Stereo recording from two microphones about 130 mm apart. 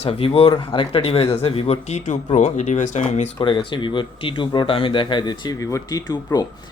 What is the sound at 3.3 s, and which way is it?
Speech, 40° left (ahead or behind).